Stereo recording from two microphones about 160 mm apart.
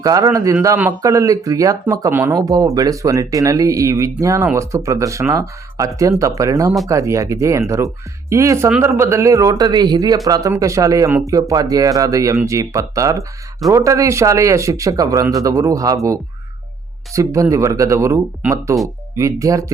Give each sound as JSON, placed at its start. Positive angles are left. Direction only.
{"t": 0.0, "sound": "speech", "side_deg": -20}
{"t": 17.2, "sound": "speech", "side_deg": -20}